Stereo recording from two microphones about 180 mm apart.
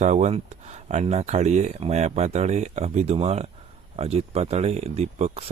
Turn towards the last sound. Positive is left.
turn(degrees=-35)  # may be behind; listen again after turning